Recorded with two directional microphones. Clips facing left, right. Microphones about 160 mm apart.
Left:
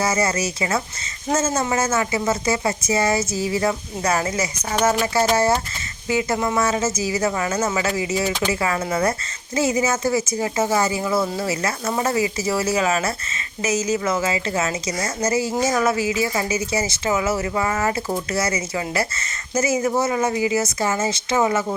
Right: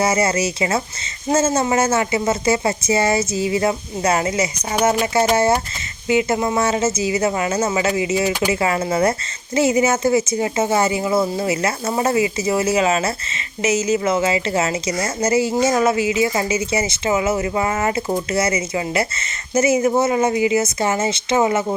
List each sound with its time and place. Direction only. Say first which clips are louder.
0.0 s speech: right 3 dB; 25° right (ahead or behind)
8.6 s speech: right 4 dB; 25° right (ahead or behind)